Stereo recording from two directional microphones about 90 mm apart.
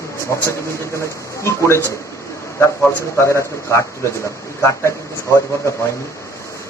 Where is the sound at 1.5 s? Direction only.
30° left (ahead or behind).